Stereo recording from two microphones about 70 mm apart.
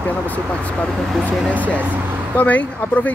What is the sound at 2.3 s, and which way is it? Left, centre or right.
Speech, left.